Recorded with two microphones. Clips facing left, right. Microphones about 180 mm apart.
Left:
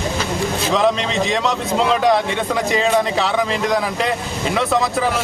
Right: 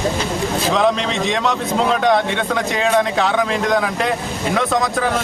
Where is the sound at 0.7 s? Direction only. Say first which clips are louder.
Left 1 dB; centre (ahead or behind).